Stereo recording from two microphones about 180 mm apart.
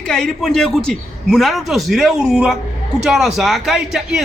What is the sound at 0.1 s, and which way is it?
A man's voice, 5° left (ahead or behind).